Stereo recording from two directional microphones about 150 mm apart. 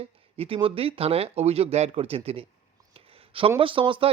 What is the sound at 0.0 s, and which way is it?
Speech, 40° right (ahead or behind).